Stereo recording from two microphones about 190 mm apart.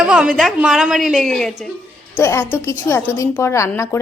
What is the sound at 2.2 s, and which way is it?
A woman's voice, 10° left (ahead or behind).